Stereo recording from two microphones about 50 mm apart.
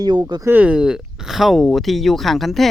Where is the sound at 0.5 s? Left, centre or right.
Right.